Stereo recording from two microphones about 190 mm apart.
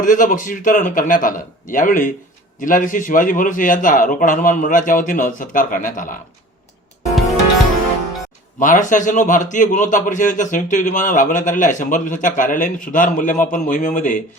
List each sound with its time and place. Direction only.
0.0 s a man's voice: 45° left (ahead or behind)
8.5 s a man's voice: 40° left (ahead or behind)